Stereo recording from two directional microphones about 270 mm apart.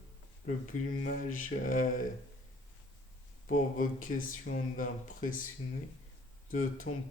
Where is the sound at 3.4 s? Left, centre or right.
Left.